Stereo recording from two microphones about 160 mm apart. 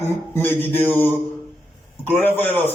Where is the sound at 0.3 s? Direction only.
10° left (ahead or behind).